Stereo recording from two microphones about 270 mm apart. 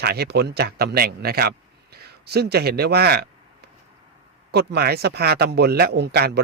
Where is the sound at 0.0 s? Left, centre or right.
Right.